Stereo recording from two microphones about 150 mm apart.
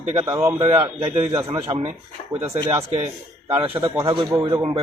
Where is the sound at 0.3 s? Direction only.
20° right (ahead or behind).